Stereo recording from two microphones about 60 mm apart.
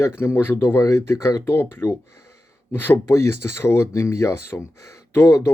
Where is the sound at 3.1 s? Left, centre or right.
Left.